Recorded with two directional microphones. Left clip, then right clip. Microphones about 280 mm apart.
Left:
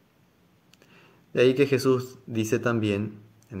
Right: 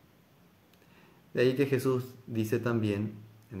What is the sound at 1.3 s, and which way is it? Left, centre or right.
Speech, left.